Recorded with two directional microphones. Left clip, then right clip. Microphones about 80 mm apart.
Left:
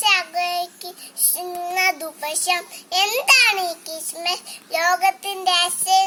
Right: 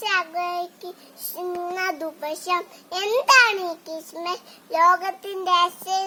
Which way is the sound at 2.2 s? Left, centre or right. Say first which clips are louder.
Left 3 dB; right.